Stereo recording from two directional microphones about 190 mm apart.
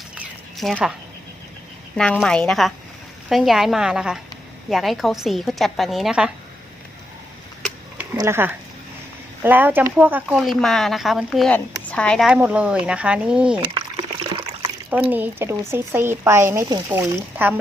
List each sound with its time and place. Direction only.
0.2 s a sound: centre (ahead or behind)
2.2 s speech: 5° left (ahead or behind)
7.6 s a sound: 5° right (ahead or behind)
8.2 s speech: 10° right (ahead or behind)
13.7 s trickle: 25° right (ahead or behind)
14.8 s speech: 10° right (ahead or behind)